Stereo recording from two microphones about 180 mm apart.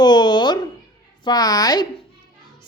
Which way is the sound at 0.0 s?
25° left (ahead or behind).